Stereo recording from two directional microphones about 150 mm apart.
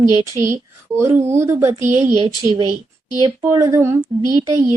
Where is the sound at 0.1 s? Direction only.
20° right (ahead or behind).